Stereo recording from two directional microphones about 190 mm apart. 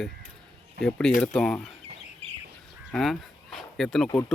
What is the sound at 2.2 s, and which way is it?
Bird, 35° right (ahead or behind).